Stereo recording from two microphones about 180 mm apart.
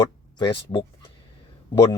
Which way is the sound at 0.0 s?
25° left (ahead or behind).